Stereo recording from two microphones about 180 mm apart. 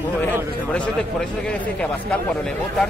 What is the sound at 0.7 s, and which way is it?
A man's voice, 5° left (ahead or behind).